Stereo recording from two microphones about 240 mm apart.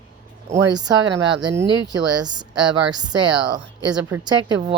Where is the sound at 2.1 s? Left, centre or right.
Centre.